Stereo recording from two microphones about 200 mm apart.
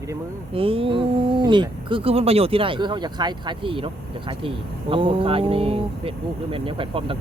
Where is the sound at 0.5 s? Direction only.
25° right (ahead or behind).